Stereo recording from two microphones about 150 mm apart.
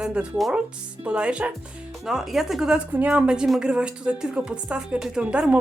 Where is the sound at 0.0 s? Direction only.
5° right (ahead or behind).